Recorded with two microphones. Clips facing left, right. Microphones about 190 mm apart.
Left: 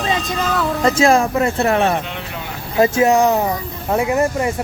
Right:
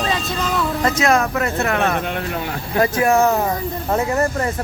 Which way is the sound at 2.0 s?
50° right (ahead or behind).